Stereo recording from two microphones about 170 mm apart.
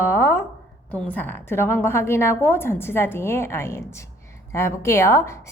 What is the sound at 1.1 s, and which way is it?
A woman's voice, 10° left (ahead or behind).